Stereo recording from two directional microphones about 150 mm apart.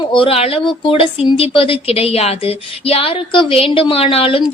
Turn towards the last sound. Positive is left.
turn(degrees=40)  # may be behind; listen again after turning